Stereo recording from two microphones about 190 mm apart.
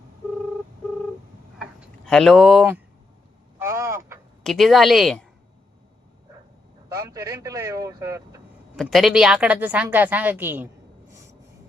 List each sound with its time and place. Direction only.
2.0 s speech: 5° left (ahead or behind)
3.6 s a sound: 15° right (ahead or behind)
4.4 s speech: centre (ahead or behind)
6.8 s a woman's voice: 15° right (ahead or behind)
8.7 s a woman's voice: centre (ahead or behind)